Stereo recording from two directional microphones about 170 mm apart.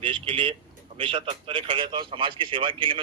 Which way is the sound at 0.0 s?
30° right (ahead or behind).